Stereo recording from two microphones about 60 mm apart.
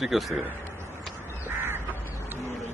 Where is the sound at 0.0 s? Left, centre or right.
Centre.